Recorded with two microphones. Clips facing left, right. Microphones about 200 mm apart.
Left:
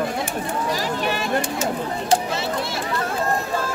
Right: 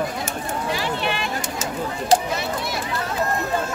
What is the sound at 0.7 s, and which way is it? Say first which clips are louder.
Speech: right 1 dB; 40° left (ahead or behind).